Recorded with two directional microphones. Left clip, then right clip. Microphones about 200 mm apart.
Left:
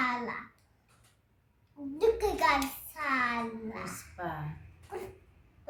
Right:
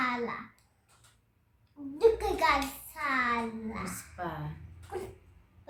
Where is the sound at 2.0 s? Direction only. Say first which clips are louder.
Right 2 dB; 15° left (ahead or behind).